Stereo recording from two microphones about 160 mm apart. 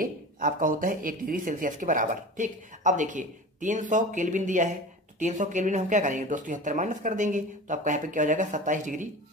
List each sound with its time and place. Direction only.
0.0 s speech: 55° right (ahead or behind)